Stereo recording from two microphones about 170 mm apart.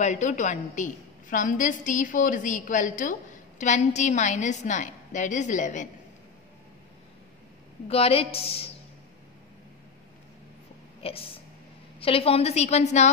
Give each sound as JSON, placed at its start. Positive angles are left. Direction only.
{"t": 0.0, "sound": "a woman's voice", "side_deg": 45}
{"t": 7.9, "sound": "a woman's voice", "side_deg": 35}
{"t": 11.0, "sound": "a woman's voice", "side_deg": 35}